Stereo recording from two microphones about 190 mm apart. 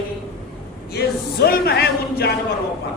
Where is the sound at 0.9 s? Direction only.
55° left (ahead or behind).